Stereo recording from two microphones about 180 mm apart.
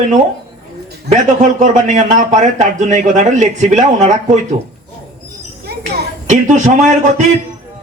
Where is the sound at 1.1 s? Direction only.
45° right (ahead or behind).